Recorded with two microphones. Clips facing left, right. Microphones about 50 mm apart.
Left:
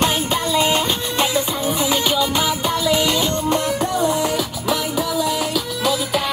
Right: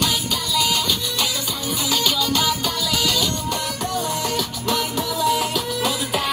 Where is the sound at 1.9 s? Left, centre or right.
Left.